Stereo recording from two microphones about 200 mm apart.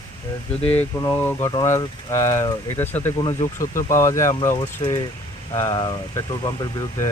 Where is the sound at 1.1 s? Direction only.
15° left (ahead or behind).